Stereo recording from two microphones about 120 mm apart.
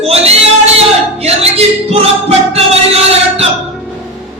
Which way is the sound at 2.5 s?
55° right (ahead or behind).